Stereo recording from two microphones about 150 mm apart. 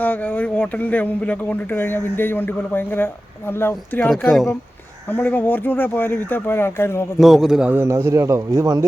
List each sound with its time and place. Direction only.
0.0 s speech: 10° left (ahead or behind)
4.2 s speech: 5° left (ahead or behind)
7.2 s a man's voice: centre (ahead or behind); by 8.9 s 25° right (ahead or behind)